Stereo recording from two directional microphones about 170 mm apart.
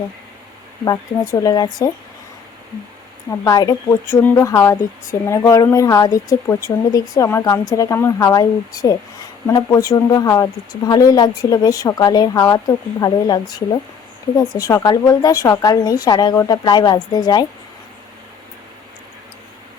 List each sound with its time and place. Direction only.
0.9 s a woman's voice: 20° left (ahead or behind)
3.4 s a woman's voice: 20° left (ahead or behind)